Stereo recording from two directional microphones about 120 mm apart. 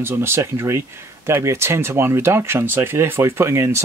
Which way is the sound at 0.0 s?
20° right (ahead or behind).